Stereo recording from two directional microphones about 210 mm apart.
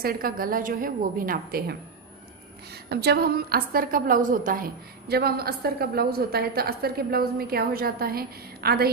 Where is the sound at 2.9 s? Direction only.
50° right (ahead or behind).